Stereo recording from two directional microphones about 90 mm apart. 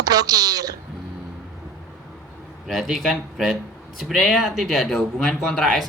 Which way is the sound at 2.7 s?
Centre (ahead or behind).